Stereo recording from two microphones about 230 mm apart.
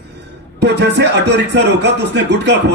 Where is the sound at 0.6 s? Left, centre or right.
Right.